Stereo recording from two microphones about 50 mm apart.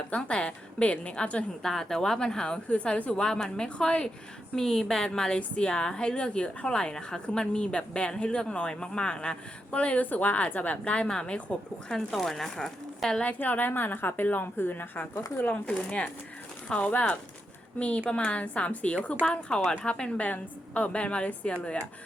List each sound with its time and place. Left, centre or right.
0.1 s a woman's voice: centre
1.6 s a woman's voice: centre
4.5 s a woman's voice: centre
12.1 s speech: centre
13.2 s a woman's voice: left
15.7 s a woman's voice: left